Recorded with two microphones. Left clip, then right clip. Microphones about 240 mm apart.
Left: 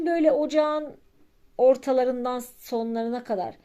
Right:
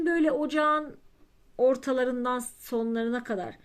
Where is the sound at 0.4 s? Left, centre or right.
Centre.